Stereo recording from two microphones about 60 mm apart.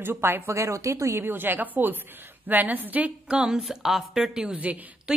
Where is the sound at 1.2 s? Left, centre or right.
Right; by 3.6 s centre.